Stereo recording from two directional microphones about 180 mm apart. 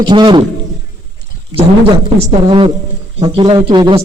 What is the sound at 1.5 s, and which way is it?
Speech, 20° right (ahead or behind).